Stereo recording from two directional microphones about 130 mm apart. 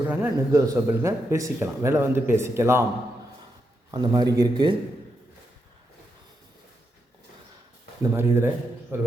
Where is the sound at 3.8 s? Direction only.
35° right (ahead or behind).